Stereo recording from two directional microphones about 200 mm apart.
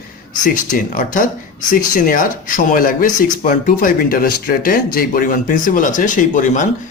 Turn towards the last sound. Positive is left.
turn(degrees=40)  # may be behind; listen again after turning